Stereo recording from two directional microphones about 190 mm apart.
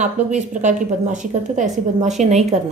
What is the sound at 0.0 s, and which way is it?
A woman's voice, 40° right (ahead or behind).